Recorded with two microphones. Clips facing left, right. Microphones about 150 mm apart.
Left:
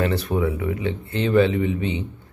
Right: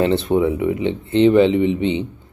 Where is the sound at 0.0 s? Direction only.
25° right (ahead or behind).